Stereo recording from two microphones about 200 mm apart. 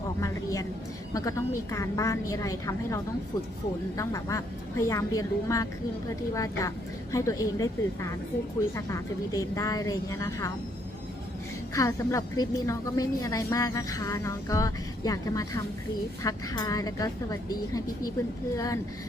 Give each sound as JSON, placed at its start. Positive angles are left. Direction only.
{"t": 0.2, "sound": "vehicle", "side_deg": 15}
{"t": 1.1, "sound": "a woman's voice", "side_deg": 15}
{"t": 8.7, "sound": "a woman's voice", "side_deg": 15}
{"t": 11.7, "sound": "a woman's voice", "side_deg": 15}
{"t": 18.5, "sound": "a woman's voice", "side_deg": 15}